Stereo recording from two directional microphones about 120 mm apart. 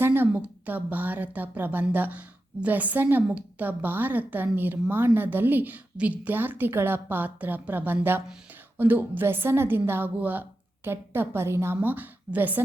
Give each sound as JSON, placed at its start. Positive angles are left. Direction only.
{"t": 0.0, "sound": "a woman's voice", "side_deg": -20}